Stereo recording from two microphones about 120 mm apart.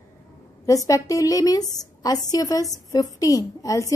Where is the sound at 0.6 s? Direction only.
30° left (ahead or behind).